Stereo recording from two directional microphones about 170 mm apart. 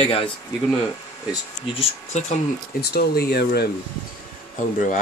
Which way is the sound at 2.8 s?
70° left (ahead or behind).